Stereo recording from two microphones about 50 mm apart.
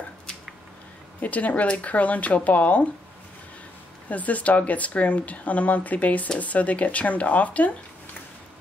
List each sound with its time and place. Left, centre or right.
1.2 s speech: left
4.1 s speech: left